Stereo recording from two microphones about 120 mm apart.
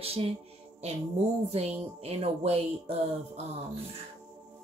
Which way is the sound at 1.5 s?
60° right (ahead or behind).